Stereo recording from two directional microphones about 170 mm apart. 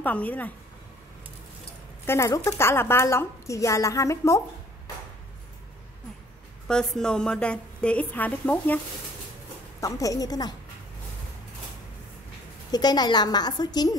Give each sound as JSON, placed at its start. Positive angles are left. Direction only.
{"t": 0.0, "sound": "a woman's voice", "side_deg": 10}
{"t": 2.0, "sound": "a woman's voice", "side_deg": 15}
{"t": 6.7, "sound": "a woman's voice", "side_deg": 5}
{"t": 9.8, "sound": "a woman's voice", "side_deg": 20}
{"t": 12.7, "sound": "a woman's voice", "side_deg": 25}